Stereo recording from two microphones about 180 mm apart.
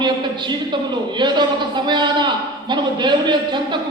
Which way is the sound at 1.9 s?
25° right (ahead or behind).